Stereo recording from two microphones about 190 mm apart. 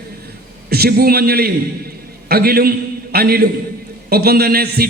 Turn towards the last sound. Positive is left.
turn(degrees=-55)  # may be behind; listen again after turning